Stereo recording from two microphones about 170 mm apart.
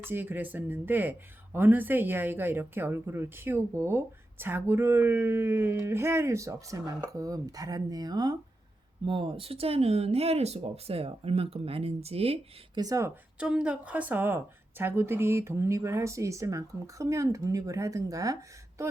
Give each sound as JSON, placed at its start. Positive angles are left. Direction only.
{"t": 0.0, "sound": "a woman's voice", "side_deg": -10}
{"t": 12.8, "sound": "a woman's voice", "side_deg": -20}